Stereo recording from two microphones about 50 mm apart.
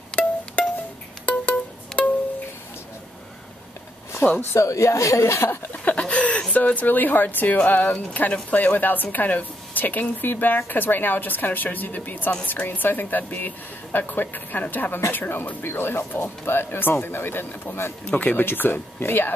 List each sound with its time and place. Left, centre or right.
0.1 s music: left
4.2 s speech: left
4.6 s a woman's voice: left
5.9 s a sound: left
6.5 s a woman's voice: left
18.1 s speech: left
18.4 s speech: left